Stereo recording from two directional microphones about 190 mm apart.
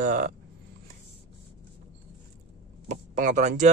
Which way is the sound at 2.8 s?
40° right (ahead or behind).